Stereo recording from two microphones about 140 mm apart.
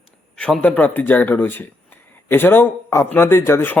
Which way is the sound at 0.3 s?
5° left (ahead or behind).